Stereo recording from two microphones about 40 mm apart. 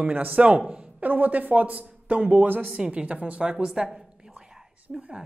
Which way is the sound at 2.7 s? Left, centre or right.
Right.